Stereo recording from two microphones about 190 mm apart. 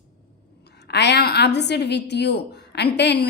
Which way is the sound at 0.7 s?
60° left (ahead or behind).